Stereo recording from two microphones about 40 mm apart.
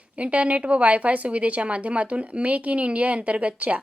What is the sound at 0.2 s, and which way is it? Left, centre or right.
A woman's voice, right.